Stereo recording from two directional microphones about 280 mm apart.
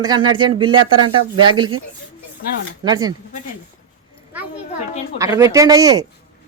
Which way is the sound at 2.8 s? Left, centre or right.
Centre.